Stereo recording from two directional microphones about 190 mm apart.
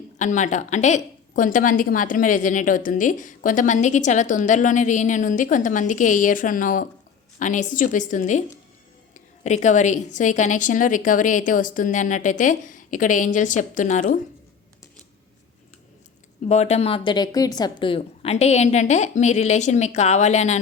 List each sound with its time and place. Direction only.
0.2 s a woman's voice: 40° left (ahead or behind)
16.5 s a woman's voice: 35° left (ahead or behind)